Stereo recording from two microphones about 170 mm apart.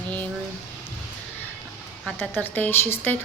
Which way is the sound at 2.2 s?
10° left (ahead or behind).